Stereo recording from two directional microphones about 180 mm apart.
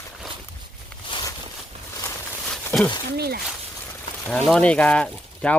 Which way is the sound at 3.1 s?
60° right (ahead or behind).